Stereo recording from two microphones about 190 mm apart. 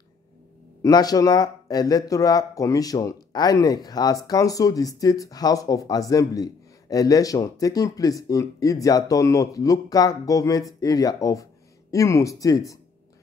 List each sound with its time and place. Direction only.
0.8 s speech: 20° left (ahead or behind)